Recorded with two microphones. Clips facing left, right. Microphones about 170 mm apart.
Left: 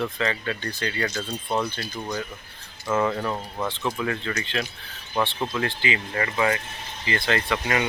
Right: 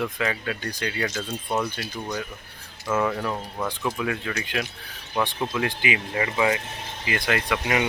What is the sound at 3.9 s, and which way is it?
Speech, 10° right (ahead or behind).